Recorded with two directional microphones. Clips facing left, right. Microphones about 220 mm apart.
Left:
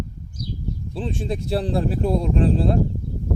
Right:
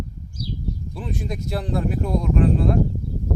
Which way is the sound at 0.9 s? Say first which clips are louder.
Left 5 dB; 30° left (ahead or behind).